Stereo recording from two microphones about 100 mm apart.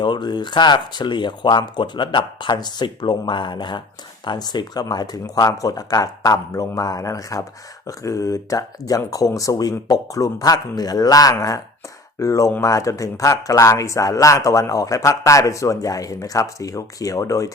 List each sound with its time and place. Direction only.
0.0 s speech: 50° left (ahead or behind); by 17.5 s 35° left (ahead or behind)